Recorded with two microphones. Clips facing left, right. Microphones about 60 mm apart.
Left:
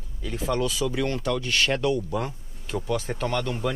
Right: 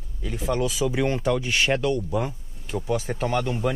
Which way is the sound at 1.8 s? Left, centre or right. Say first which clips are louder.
Right 1 dB; centre.